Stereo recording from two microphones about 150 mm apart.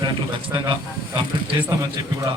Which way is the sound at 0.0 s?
30° right (ahead or behind).